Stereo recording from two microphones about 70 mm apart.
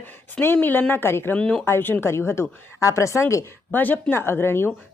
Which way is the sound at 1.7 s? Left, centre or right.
Left.